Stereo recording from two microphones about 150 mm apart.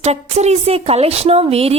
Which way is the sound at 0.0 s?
45° right (ahead or behind).